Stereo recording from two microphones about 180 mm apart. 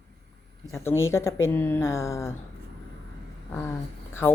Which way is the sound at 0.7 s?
15° left (ahead or behind).